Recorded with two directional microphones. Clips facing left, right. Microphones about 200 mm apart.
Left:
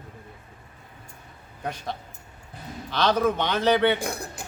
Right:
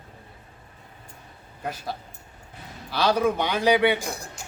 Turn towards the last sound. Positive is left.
turn(degrees=55)  # may be behind; listen again after turning